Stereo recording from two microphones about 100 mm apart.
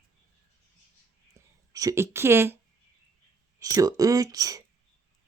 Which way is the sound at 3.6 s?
35° right (ahead or behind).